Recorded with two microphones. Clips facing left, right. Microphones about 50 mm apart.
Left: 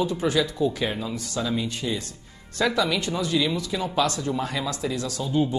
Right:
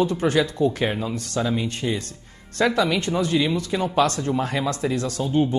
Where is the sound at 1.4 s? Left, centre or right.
Right.